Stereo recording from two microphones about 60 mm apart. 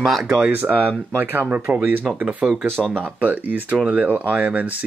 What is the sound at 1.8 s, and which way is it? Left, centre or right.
Speech, right.